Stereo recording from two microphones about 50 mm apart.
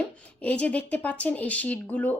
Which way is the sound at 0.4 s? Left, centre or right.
Left.